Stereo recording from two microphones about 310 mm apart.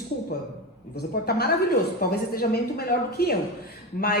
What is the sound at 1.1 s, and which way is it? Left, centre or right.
A man's voice, left.